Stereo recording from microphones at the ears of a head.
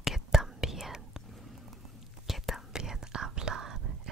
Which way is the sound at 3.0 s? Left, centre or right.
Right.